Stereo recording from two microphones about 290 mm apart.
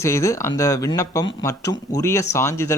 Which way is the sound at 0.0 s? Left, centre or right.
Centre.